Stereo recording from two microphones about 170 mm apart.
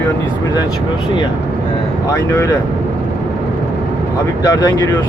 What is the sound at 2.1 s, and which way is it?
Speech, 15° left (ahead or behind).